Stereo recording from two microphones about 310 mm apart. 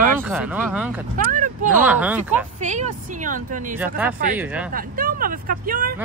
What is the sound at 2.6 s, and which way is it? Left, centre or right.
Speech, right.